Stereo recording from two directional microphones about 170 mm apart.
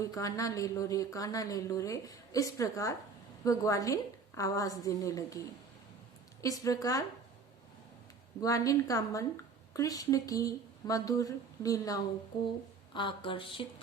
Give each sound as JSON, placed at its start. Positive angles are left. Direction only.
{"t": 0.0, "sound": "speech", "side_deg": 20}
{"t": 6.4, "sound": "speech", "side_deg": 20}
{"t": 8.4, "sound": "speech", "side_deg": 20}